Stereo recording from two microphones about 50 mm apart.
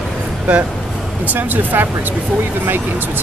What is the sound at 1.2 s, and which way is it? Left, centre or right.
Speech, right.